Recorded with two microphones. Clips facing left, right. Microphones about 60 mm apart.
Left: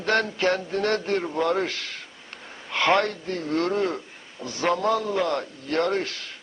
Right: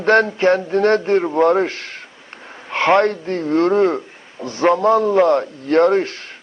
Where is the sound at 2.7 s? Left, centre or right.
Right.